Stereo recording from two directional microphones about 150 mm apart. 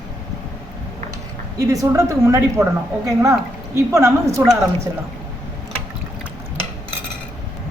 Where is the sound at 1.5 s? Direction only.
25° right (ahead or behind).